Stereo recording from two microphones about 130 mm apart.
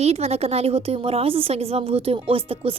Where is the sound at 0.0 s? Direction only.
55° right (ahead or behind).